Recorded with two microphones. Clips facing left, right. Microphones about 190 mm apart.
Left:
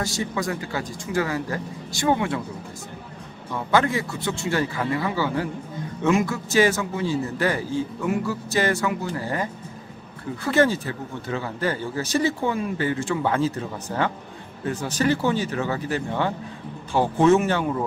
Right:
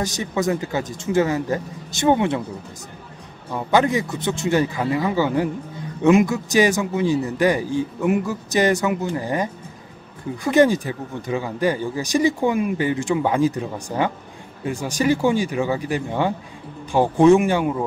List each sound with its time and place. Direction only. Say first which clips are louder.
0.0 s a man's voice: right 4 dB; 20° right (ahead or behind)
3.5 s a man's voice: right 3 dB; 20° right (ahead or behind)